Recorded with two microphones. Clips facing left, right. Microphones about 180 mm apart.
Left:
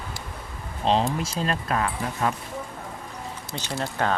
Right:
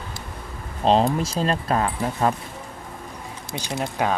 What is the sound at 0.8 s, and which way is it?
Speech, 40° right (ahead or behind).